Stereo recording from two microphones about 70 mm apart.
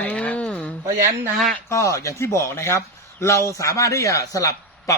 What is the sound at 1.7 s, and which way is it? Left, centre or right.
Speech, left.